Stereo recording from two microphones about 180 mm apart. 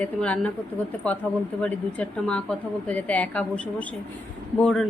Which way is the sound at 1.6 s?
5° left (ahead or behind).